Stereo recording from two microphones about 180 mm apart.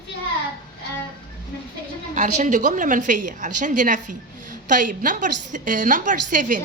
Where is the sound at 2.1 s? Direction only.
45° right (ahead or behind).